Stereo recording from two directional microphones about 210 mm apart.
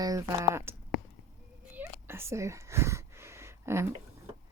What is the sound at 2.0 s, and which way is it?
Whispering, 10° right (ahead or behind).